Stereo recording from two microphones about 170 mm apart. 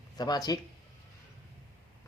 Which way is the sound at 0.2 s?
25° left (ahead or behind).